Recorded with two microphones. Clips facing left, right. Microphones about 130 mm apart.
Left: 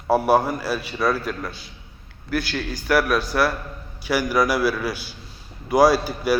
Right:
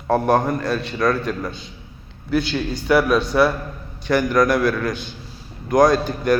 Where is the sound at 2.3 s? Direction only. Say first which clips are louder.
Right 5 dB; 25° right (ahead or behind).